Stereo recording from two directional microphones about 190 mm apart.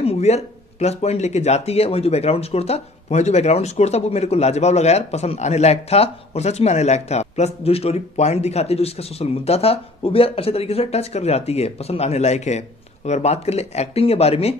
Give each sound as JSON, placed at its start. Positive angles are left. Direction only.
{"t": 0.0, "sound": "speech", "side_deg": 35}